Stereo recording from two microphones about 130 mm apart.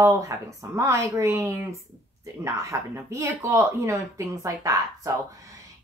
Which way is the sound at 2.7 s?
20° right (ahead or behind).